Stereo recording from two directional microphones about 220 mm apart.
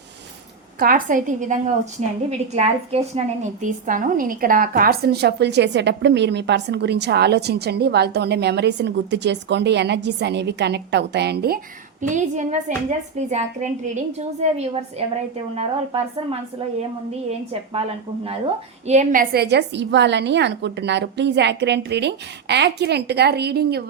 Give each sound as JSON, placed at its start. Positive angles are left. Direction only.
{"t": 0.8, "sound": "a woman's voice", "side_deg": -40}
{"t": 12.0, "sound": "a woman's voice", "side_deg": -35}
{"t": 15.5, "sound": "speech", "side_deg": -25}
{"t": 18.9, "sound": "a woman's voice", "side_deg": -35}